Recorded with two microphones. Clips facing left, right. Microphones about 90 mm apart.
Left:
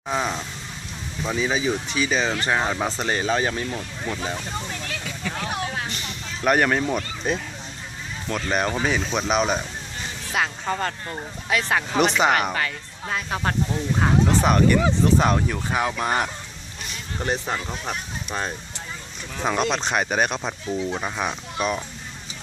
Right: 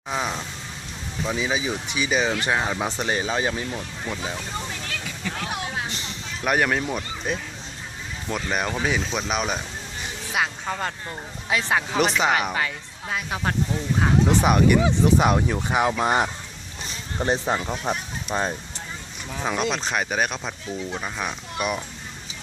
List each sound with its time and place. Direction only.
0.1 s speech: centre (ahead or behind)
2.8 s speech: 10° right (ahead or behind)
5.0 s vehicle: centre (ahead or behind)
5.7 s vehicle: 20° right (ahead or behind)
6.4 s speech: centre (ahead or behind)
11.4 s speech: 20° right (ahead or behind)
11.9 s speech: centre (ahead or behind); by 18.5 s 20° right (ahead or behind)
19.4 s speech: centre (ahead or behind)